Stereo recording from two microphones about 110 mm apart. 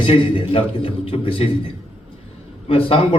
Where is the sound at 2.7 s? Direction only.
55° left (ahead or behind).